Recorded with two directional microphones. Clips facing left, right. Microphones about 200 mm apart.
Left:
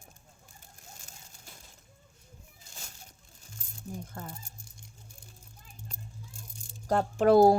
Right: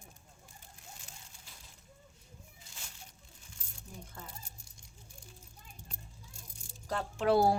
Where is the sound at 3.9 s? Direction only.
50° left (ahead or behind).